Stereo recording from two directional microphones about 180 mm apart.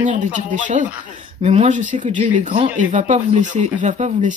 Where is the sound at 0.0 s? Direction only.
45° right (ahead or behind).